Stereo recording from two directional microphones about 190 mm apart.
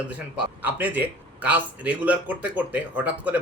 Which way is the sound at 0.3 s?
10° right (ahead or behind).